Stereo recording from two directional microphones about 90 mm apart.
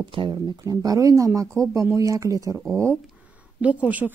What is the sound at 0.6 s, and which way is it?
Speech, 40° right (ahead or behind).